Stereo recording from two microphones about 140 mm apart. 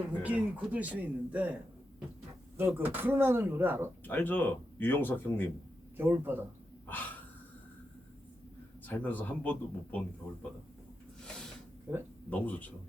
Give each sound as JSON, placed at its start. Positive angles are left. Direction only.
{"t": 0.2, "sound": "speech", "side_deg": -10}
{"t": 2.6, "sound": "speech", "side_deg": -15}
{"t": 4.0, "sound": "speech", "side_deg": 15}
{"t": 6.0, "sound": "speech", "side_deg": -15}
{"t": 6.8, "sound": "breathing", "side_deg": 15}
{"t": 8.9, "sound": "speech", "side_deg": 15}
{"t": 12.3, "sound": "speech", "side_deg": 10}